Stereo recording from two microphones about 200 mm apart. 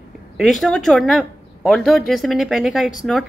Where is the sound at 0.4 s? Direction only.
Centre (ahead or behind).